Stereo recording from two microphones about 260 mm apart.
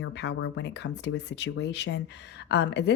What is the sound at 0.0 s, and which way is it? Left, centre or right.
Speech, left.